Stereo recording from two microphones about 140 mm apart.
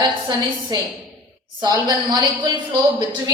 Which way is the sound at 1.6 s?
30° right (ahead or behind).